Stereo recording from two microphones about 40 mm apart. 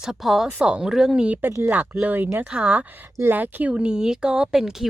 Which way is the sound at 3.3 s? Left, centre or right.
Right.